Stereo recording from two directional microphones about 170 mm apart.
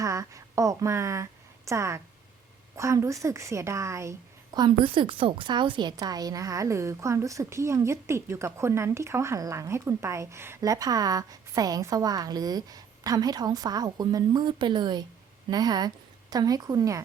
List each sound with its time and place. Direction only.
0.0 s a woman's voice: 20° right (ahead or behind)
4.5 s a woman's voice: 25° right (ahead or behind)